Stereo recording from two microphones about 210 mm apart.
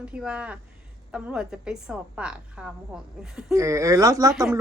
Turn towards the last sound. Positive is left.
turn(degrees=-15)  # may be behind; listen again after turning